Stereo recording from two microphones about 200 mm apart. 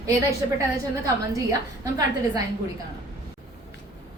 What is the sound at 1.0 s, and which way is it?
Speech, 15° right (ahead or behind).